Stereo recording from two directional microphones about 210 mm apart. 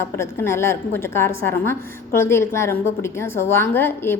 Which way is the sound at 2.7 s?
45° left (ahead or behind).